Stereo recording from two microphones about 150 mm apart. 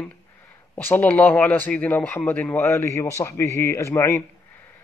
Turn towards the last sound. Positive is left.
turn(degrees=20)  # may be behind; listen again after turning